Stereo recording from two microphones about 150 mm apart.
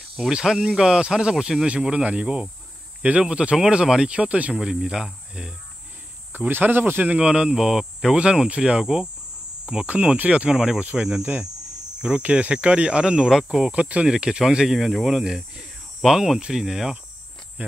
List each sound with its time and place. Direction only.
0.2 s speech: 5° right (ahead or behind)